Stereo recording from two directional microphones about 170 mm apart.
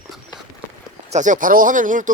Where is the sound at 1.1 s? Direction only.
45° right (ahead or behind).